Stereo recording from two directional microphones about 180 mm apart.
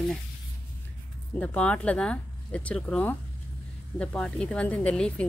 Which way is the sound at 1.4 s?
5° left (ahead or behind).